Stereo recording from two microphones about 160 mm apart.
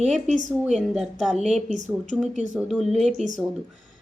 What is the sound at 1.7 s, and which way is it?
Speech, 50° right (ahead or behind).